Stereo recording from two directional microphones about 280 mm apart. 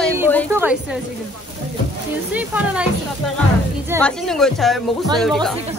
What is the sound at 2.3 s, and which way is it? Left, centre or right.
Speech, centre.